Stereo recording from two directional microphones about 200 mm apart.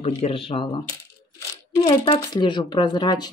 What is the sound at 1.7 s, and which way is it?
Speech, 20° left (ahead or behind).